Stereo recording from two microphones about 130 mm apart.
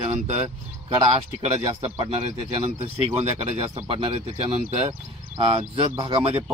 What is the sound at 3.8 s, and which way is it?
Speech, 40° right (ahead or behind).